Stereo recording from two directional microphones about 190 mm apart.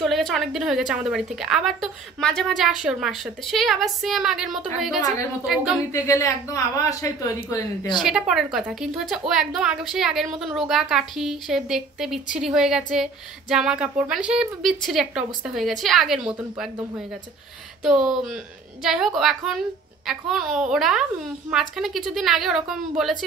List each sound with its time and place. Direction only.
0.0 s a woman's voice: centre (ahead or behind)
5.9 s speech: 15° left (ahead or behind)
8.0 s a woman's voice: 5° right (ahead or behind)
17.8 s a woman's voice: 5° right (ahead or behind)